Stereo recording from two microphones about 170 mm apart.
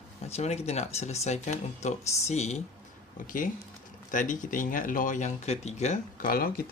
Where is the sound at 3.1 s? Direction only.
50° left (ahead or behind).